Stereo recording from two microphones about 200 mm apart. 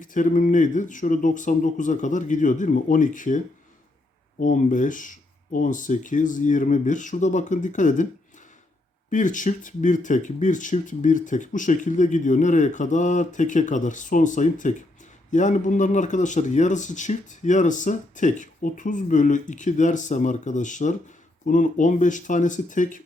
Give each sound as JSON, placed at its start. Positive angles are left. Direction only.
{"t": 0.0, "sound": "speech", "side_deg": 40}
{"t": 9.0, "sound": "speech", "side_deg": 40}